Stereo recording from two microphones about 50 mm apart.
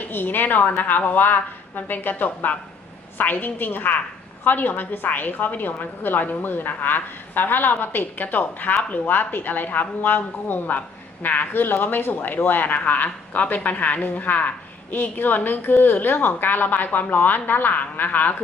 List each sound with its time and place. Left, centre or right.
0.0 s a woman's voice: left